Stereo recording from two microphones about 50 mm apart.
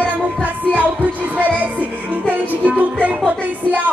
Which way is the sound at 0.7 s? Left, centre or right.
Right.